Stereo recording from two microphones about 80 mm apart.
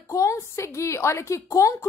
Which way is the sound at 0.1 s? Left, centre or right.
Left.